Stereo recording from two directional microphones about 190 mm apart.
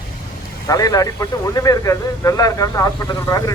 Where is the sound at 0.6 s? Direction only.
20° left (ahead or behind).